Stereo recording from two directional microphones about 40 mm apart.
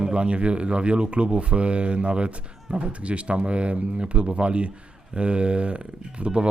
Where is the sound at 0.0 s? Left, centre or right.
Right.